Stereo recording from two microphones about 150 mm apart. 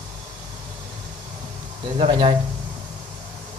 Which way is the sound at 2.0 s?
35° right (ahead or behind).